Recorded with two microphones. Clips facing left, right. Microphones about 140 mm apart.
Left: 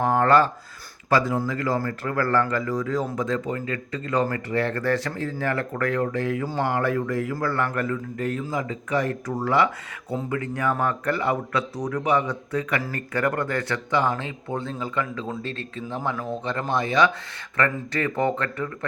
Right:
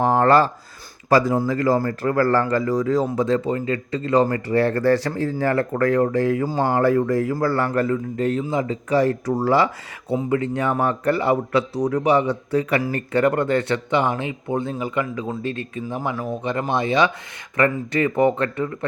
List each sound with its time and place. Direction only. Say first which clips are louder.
0.0 s a man's voice: right 3 dB; 30° right (ahead or behind)
10.1 s a man's voice: right 6 dB; 20° right (ahead or behind)